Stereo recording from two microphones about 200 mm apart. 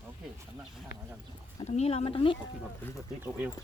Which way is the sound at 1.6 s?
35° left (ahead or behind).